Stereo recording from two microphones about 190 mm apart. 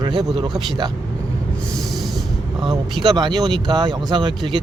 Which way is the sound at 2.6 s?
25° right (ahead or behind).